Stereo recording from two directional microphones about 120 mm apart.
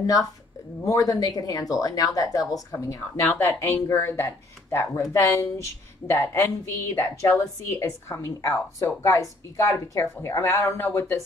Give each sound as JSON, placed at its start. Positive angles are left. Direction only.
{"t": 0.8, "sound": "a woman's voice", "side_deg": 30}